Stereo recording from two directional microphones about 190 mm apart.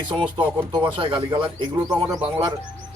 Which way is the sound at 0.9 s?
25° right (ahead or behind).